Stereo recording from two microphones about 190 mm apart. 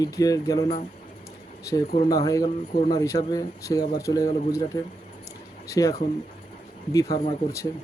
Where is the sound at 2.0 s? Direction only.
20° left (ahead or behind).